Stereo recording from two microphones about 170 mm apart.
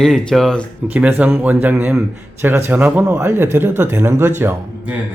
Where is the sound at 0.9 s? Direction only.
10° right (ahead or behind).